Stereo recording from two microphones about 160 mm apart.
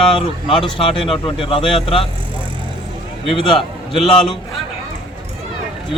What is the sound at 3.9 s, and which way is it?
Speech, centre (ahead or behind).